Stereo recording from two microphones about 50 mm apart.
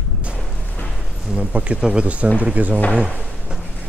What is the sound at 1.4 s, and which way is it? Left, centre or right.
Speech, right.